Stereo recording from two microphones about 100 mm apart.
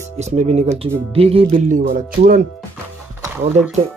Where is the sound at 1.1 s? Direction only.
70° right (ahead or behind).